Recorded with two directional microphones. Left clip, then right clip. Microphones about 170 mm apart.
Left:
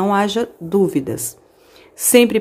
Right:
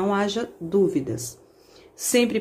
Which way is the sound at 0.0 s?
30° left (ahead or behind).